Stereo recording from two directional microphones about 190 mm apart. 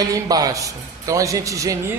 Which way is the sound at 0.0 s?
20° right (ahead or behind).